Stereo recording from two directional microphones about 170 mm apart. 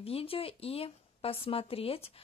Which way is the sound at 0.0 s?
35° left (ahead or behind).